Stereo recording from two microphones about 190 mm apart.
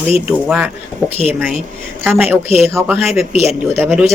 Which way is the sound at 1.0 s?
30° left (ahead or behind).